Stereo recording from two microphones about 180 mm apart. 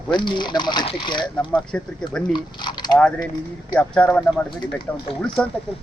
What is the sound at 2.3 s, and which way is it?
Speech, 25° left (ahead or behind).